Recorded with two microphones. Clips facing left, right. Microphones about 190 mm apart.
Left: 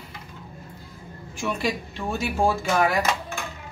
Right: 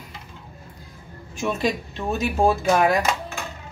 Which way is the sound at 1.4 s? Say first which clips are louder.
Right 3 dB; 20° right (ahead or behind).